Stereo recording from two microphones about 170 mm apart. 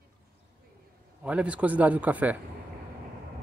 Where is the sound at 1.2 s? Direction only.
5° right (ahead or behind).